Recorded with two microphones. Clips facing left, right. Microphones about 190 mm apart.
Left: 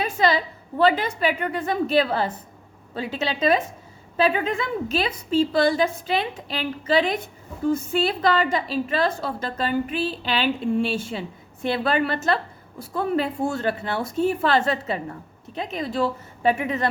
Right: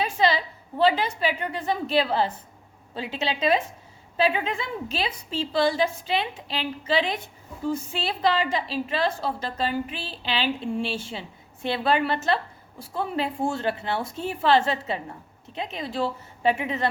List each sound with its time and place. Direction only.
0.0 s a woman's voice: 45° left (ahead or behind)